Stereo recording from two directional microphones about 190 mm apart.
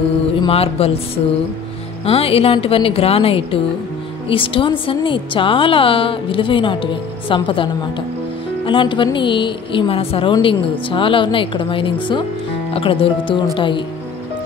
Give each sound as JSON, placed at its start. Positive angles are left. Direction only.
{"t": 0.4, "sound": "a woman's voice", "side_deg": 30}